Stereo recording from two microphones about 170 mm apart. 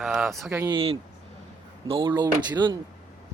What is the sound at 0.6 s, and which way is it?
Speech, 30° right (ahead or behind).